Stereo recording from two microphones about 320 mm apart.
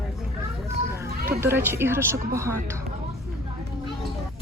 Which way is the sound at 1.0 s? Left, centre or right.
Right.